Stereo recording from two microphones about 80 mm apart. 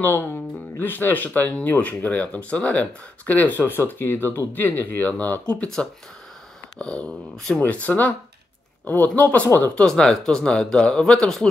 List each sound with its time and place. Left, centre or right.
0.0 s speech: left
9.8 s speech: centre